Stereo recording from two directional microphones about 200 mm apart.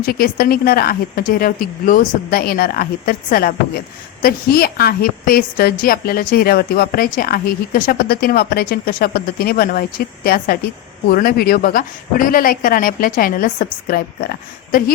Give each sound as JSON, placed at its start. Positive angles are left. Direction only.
{"t": 0.0, "sound": "a woman's voice", "side_deg": 45}